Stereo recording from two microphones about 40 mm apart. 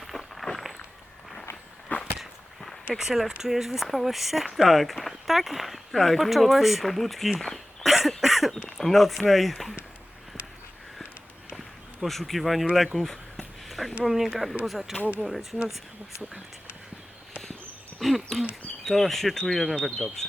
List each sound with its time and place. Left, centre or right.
0.0 s walk: centre
1.9 s whip: left
3.0 s speech: centre
7.9 s a sound: centre
8.8 s speech: centre
12.0 s speech: centre
13.7 s a sound: centre
14.0 s speech: centre
18.0 s a sound: centre
18.9 s speech: centre